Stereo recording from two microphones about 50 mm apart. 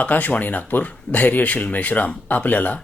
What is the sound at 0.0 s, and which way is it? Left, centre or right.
Speech, left.